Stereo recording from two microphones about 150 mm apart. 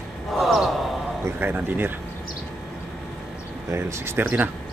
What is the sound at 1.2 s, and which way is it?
Speech, 15° right (ahead or behind).